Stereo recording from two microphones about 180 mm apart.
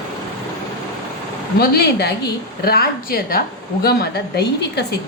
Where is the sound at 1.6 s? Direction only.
65° left (ahead or behind).